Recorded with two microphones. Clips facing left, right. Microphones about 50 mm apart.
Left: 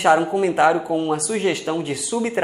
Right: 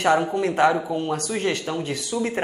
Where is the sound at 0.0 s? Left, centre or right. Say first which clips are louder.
Left 4 dB; centre.